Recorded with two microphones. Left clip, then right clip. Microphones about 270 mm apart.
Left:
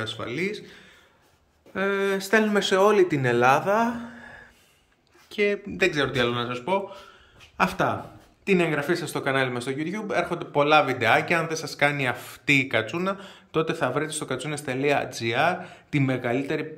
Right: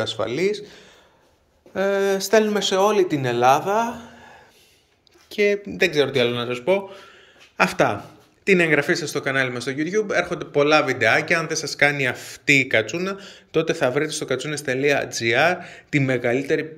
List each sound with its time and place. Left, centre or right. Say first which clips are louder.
0.0 s speech: right 7 dB; centre
5.3 s speech: right 4 dB; centre